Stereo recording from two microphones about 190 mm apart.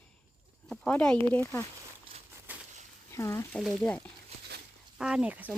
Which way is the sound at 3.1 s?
15° left (ahead or behind).